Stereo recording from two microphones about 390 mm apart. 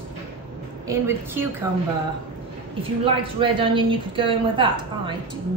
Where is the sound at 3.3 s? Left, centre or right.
Centre.